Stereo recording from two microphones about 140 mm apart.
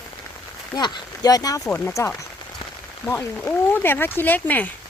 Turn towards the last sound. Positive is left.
turn(degrees=10)  # may be behind; listen again after turning